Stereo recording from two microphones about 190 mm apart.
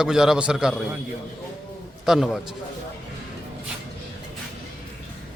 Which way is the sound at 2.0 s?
Centre (ahead or behind).